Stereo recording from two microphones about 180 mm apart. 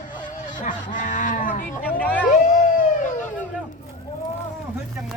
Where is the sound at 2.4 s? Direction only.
45° left (ahead or behind).